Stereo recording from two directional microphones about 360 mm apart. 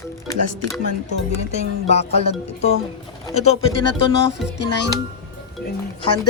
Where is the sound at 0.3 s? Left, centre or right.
Left.